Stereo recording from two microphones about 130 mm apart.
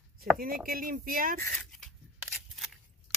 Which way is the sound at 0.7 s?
90° right.